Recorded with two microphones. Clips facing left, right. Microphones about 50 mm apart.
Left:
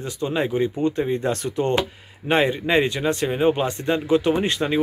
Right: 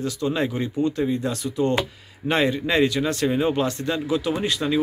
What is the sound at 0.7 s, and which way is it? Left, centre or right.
Speech, left.